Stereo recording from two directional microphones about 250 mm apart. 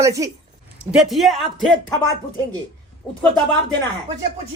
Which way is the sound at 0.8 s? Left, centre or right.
Centre.